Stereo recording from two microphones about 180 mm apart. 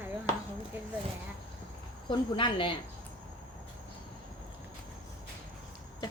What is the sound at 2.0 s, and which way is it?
Speech, 25° left (ahead or behind).